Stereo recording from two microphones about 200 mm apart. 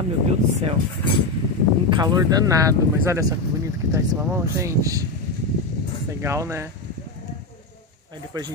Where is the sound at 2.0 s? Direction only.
20° right (ahead or behind).